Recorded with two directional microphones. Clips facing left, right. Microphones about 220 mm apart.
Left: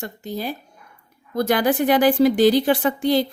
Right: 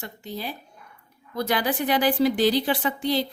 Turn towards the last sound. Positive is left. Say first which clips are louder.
# left 6 dB
turn(degrees=50)  # may be behind; listen again after turning